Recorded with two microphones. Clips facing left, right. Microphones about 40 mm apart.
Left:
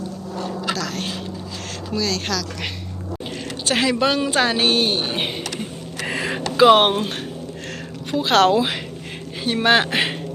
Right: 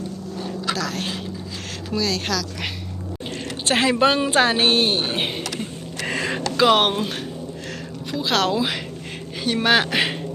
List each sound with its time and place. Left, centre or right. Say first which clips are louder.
0.8 s a sound: even; centre
1.9 s speech: even; centre
3.7 s speech: right 1 dB; right
3.9 s speech: right 2 dB; centre
4.9 s a sound: even; centre
8.1 s speech: left 5 dB; left
9.4 s speech: left 1 dB; centre